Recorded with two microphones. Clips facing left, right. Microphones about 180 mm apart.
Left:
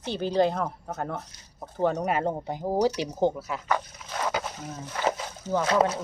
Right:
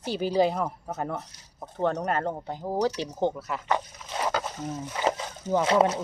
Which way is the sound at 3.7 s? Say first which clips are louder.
Right 1 dB; 20° right (ahead or behind).